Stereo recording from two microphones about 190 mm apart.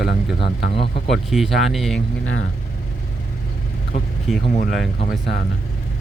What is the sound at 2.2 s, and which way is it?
Speech, 90° left.